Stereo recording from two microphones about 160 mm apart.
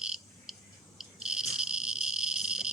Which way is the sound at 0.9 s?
5° right (ahead or behind).